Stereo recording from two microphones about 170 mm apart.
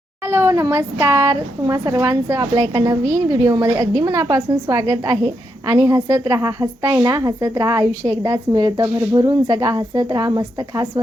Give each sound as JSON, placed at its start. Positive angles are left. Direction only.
{"t": 0.3, "sound": "a woman's voice", "side_deg": -15}